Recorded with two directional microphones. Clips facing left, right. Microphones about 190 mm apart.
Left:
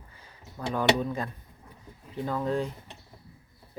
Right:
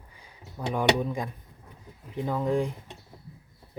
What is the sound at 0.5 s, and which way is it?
Speech, 15° right (ahead or behind).